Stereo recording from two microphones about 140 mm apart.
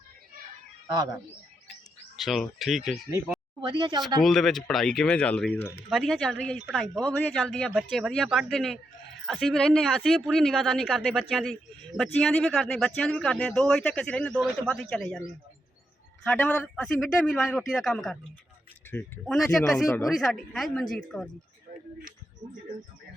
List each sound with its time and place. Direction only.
2.1 s speech: centre (ahead or behind)
3.6 s speech: 35° right (ahead or behind)
4.2 s speech: 5° left (ahead or behind)
14.3 s speech: 15° right (ahead or behind)
14.7 s speech: 5° left (ahead or behind)
16.2 s speech: 10° left (ahead or behind)
16.8 s speech: centre (ahead or behind)
18.9 s speech: 15° left (ahead or behind)
19.2 s speech: centre (ahead or behind)